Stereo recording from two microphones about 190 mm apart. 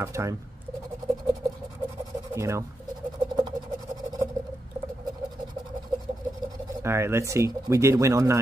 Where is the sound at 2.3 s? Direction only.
15° right (ahead or behind).